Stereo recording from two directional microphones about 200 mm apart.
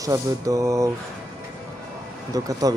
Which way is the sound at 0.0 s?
15° right (ahead or behind).